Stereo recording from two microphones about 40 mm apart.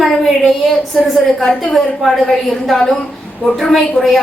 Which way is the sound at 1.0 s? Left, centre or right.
Centre.